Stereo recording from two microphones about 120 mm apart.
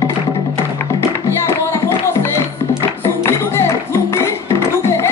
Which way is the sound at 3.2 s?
20° left (ahead or behind).